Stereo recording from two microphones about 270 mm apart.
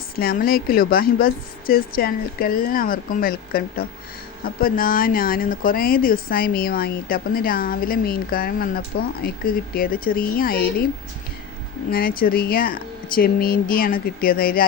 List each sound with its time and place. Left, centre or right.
0.2 s speech: left
11.9 s speech: left